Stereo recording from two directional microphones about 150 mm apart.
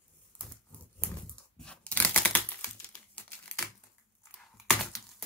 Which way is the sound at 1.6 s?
5° left (ahead or behind).